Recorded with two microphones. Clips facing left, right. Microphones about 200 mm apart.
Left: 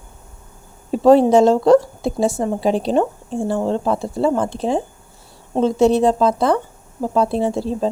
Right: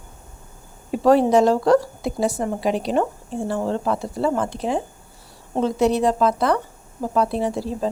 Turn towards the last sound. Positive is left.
turn(degrees=25)  # may be behind; listen again after turning